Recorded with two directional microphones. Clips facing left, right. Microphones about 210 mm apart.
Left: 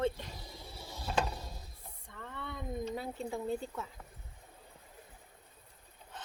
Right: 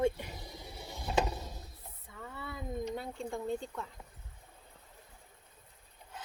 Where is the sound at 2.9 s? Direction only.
5° left (ahead or behind).